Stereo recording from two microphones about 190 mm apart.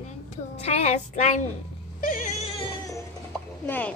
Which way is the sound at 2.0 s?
40° left (ahead or behind).